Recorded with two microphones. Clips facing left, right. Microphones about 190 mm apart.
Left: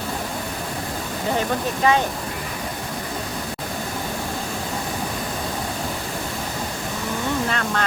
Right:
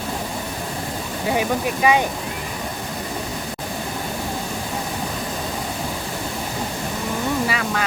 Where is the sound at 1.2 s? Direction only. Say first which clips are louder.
Right 2 dB; 10° right (ahead or behind).